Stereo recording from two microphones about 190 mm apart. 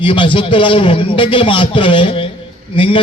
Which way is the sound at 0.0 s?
25° left (ahead or behind).